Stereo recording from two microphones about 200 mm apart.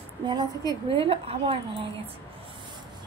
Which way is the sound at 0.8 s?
25° right (ahead or behind).